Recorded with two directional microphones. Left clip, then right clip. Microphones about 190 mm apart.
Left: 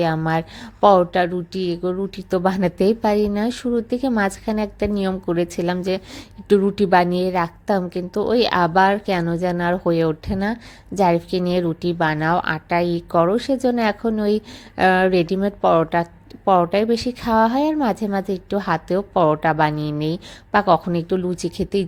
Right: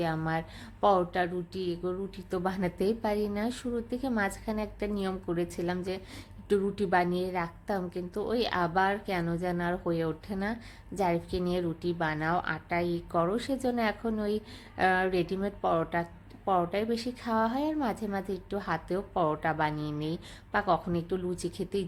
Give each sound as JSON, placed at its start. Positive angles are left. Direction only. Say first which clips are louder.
{"t": 0.0, "sound": "a woman's voice", "louder": "left 11 dB", "side_deg": 35}